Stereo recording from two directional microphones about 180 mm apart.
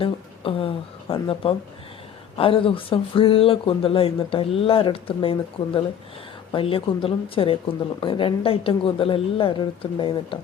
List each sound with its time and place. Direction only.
0.0 s speech: 30° left (ahead or behind)